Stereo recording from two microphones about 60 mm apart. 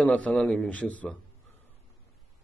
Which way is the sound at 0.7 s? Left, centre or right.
Left.